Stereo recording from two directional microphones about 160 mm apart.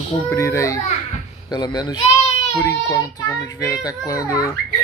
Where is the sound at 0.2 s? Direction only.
15° left (ahead or behind).